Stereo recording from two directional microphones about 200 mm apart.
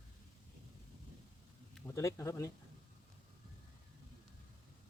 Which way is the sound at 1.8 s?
15° left (ahead or behind).